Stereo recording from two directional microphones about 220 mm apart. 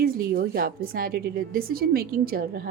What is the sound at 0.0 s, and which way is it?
A woman's voice, 40° right (ahead or behind).